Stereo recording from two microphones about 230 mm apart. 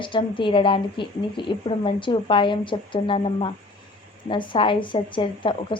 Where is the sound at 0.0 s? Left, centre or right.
Left.